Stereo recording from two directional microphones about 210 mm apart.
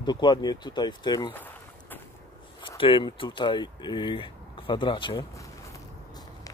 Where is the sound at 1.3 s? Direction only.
10° left (ahead or behind).